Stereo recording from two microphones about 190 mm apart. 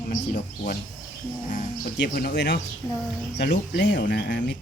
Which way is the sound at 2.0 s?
60° left (ahead or behind).